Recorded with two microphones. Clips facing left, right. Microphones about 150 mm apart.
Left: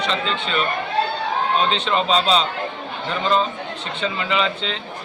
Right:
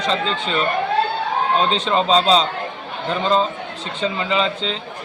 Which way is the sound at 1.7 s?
35° right (ahead or behind).